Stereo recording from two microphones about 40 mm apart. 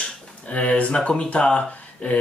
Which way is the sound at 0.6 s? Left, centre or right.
Left.